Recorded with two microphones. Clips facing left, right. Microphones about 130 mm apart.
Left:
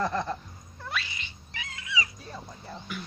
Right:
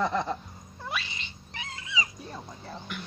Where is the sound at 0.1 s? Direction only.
20° right (ahead or behind).